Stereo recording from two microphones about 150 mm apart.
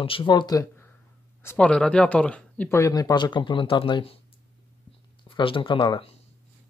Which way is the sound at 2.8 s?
25° left (ahead or behind).